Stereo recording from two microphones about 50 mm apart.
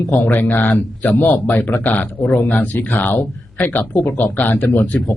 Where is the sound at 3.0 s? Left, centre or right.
Left.